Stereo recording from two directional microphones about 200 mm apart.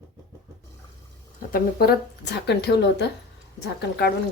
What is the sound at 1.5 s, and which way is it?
Speech, 50° left (ahead or behind).